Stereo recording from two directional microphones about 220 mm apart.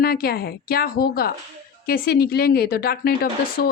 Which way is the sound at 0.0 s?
45° left (ahead or behind).